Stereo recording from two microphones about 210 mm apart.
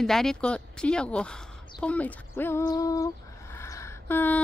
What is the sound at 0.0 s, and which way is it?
A woman's voice, centre (ahead or behind).